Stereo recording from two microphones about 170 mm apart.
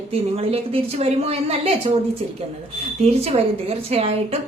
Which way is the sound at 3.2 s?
35° right (ahead or behind).